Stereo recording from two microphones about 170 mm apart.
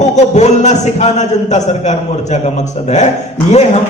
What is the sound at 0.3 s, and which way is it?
A man's voice, 45° left (ahead or behind).